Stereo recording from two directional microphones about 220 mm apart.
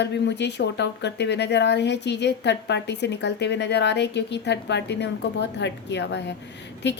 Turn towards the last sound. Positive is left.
turn(degrees=50)  # may be behind; listen again after turning